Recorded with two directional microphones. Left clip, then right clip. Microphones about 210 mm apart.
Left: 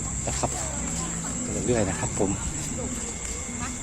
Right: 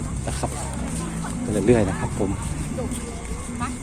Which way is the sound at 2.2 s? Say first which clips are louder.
Even; 20° left (ahead or behind).